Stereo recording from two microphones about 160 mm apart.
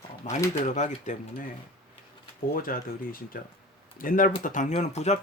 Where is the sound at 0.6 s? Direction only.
50° left (ahead or behind).